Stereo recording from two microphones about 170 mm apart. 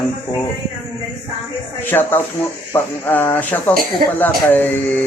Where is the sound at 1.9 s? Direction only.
10° left (ahead or behind).